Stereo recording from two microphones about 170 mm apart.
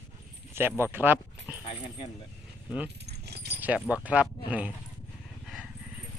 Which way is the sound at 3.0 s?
75° right (ahead or behind).